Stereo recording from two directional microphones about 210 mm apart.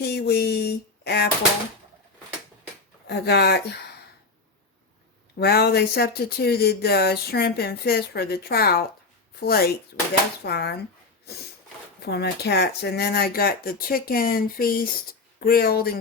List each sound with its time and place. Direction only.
0.0 s a sound: 50° left (ahead or behind)
3.1 s speech: 50° left (ahead or behind)
5.4 s speech: 50° left (ahead or behind)
12.0 s speech: 50° left (ahead or behind)